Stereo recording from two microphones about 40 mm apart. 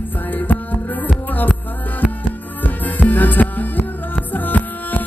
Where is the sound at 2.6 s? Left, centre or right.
Left.